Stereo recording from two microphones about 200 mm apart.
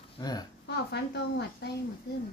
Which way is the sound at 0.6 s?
55° left (ahead or behind).